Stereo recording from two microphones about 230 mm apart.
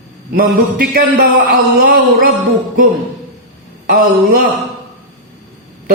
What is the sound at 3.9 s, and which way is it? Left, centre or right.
Speech, right.